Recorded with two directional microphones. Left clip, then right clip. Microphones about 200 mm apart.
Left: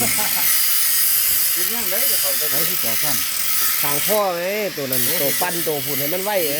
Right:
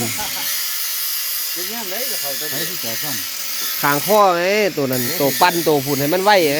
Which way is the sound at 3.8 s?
50° right (ahead or behind).